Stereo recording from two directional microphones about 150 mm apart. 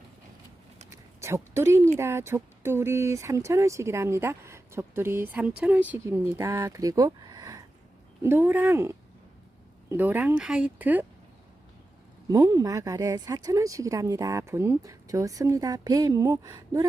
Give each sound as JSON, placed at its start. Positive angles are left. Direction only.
{"t": 0.9, "sound": "a sound", "side_deg": -20}
{"t": 2.0, "sound": "speech", "side_deg": -15}
{"t": 12.3, "sound": "speech", "side_deg": -25}